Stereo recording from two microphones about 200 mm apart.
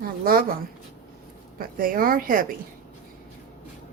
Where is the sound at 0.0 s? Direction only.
45° right (ahead or behind).